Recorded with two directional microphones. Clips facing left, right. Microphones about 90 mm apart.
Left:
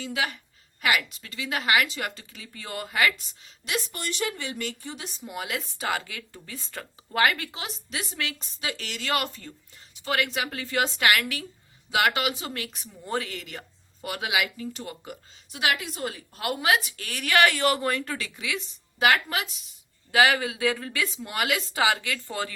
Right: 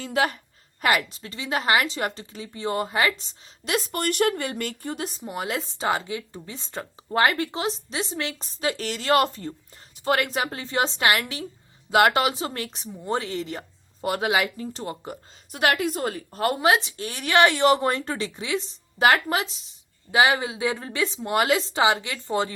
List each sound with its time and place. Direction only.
0.0 s speech: 40° right (ahead or behind)
3.7 s speech: 45° right (ahead or behind)
10.6 s a woman's voice: 25° right (ahead or behind)
11.9 s speech: 40° right (ahead or behind); by 22.5 s 25° right (ahead or behind)